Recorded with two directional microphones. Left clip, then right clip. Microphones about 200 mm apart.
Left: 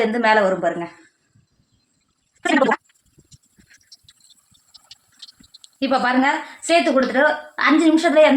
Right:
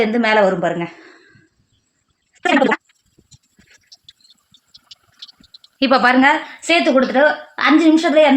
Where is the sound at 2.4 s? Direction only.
50° right (ahead or behind).